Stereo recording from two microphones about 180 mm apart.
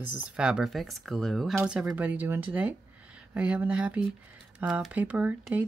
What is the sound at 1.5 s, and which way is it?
Speech, 15° right (ahead or behind).